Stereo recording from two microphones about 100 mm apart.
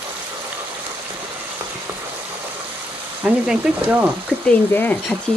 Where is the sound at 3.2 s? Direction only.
10° right (ahead or behind).